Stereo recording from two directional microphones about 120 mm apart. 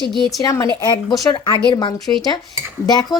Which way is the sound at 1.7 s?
40° left (ahead or behind).